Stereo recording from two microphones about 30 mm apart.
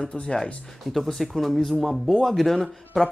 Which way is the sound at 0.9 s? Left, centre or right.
Centre.